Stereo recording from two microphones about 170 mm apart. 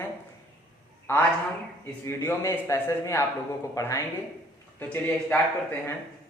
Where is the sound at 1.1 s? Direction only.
15° left (ahead or behind).